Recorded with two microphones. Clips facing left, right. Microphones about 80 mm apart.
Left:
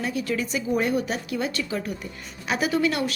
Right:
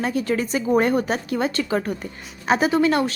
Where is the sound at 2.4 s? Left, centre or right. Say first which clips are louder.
Right 5 dB; right.